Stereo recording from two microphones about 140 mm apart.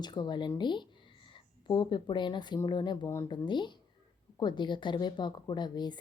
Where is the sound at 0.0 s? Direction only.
30° left (ahead or behind).